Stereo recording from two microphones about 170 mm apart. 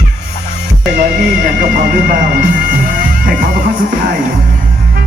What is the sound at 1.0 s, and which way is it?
Music, 55° right (ahead or behind).